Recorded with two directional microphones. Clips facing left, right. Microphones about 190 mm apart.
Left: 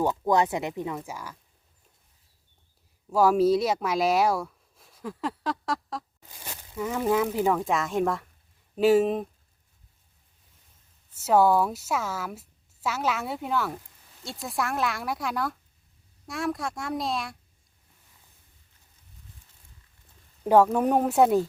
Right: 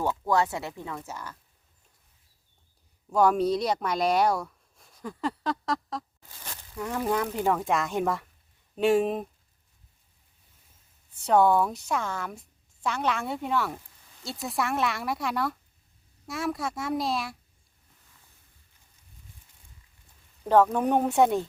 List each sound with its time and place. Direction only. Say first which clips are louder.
0.0 s speech: left 2 dB; 15° left (ahead or behind)
3.1 s a woman's voice: left 2 dB; 5° left (ahead or behind)
11.1 s a woman's voice: left 1 dB; 5° left (ahead or behind)
20.5 s a woman's voice: left 2 dB; 10° left (ahead or behind)